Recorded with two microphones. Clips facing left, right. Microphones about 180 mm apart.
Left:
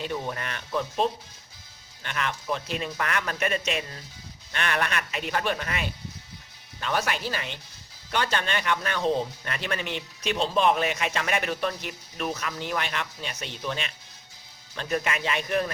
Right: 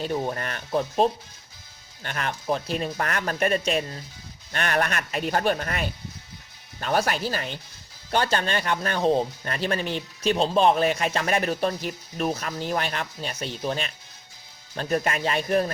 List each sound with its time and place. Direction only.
0.0 s speech: 40° right (ahead or behind)